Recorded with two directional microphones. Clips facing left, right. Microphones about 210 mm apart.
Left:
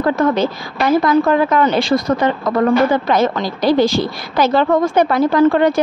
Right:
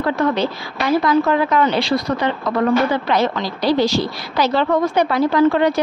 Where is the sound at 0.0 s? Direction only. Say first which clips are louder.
Left 3 dB; 45° left (ahead or behind).